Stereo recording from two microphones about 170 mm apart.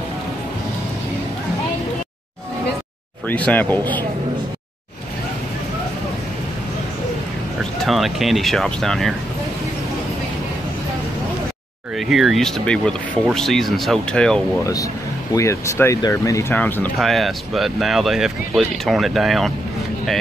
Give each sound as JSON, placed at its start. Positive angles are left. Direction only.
{"t": 3.3, "sound": "speech", "side_deg": 10}
{"t": 7.8, "sound": "speech", "side_deg": 0}
{"t": 12.1, "sound": "speech", "side_deg": 0}
{"t": 14.6, "sound": "speech", "side_deg": 20}
{"t": 17.0, "sound": "speech", "side_deg": 0}